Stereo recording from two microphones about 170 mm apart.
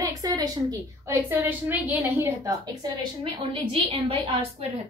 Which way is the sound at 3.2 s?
35° right (ahead or behind).